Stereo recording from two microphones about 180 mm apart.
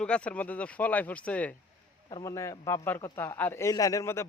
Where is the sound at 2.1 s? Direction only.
20° left (ahead or behind).